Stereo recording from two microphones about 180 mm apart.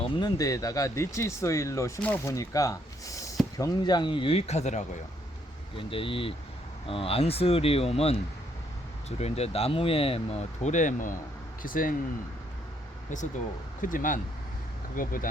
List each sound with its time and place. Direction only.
0.0 s speech: 25° left (ahead or behind); by 4.9 s 40° left (ahead or behind)
5.7 s speech: 30° left (ahead or behind); by 11.9 s 50° left (ahead or behind)
13.8 s speech: 50° left (ahead or behind)